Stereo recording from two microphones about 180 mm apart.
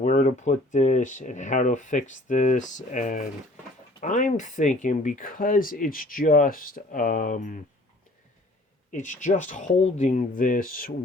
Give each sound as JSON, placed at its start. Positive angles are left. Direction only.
{"t": 0.0, "sound": "speech", "side_deg": 45}
{"t": 8.9, "sound": "speech", "side_deg": 45}